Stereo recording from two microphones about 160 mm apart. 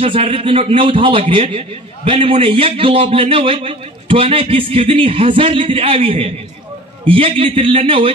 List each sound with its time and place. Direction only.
0.0 s a man's voice: 35° right (ahead or behind)